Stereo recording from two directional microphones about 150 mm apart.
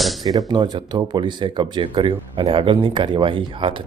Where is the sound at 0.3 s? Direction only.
25° right (ahead or behind).